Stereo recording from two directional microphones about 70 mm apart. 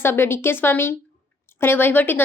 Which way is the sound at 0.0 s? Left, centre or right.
Left.